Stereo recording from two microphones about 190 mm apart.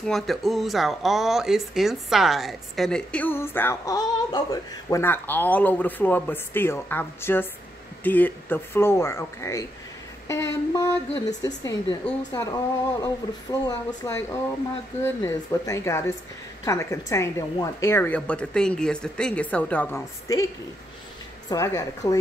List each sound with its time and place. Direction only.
0.0 s speech: centre (ahead or behind)
10.2 s a sound: 15° left (ahead or behind)
11.1 s speech: 20° left (ahead or behind)
21.5 s speech: 15° left (ahead or behind)